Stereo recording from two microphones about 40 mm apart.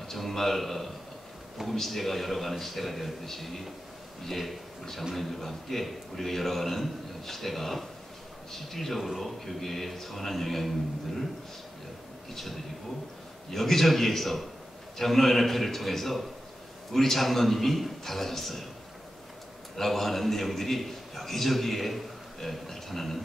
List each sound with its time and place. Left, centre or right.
0.0 s a man's voice: centre
13.5 s a man's voice: centre
19.8 s a man's voice: centre